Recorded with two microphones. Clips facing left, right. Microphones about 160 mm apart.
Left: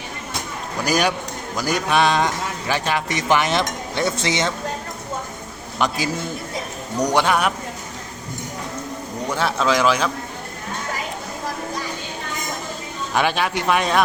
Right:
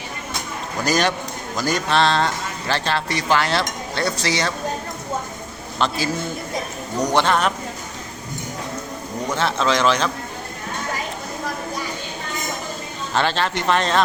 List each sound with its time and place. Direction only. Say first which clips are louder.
0.9 s speech: even; 10° left (ahead or behind)
5.8 s speech: even; 10° left (ahead or behind)
7.0 s speech: even; 10° left (ahead or behind)
9.3 s speech: left 1 dB; 10° left (ahead or behind)
13.1 s speech: even; 10° left (ahead or behind)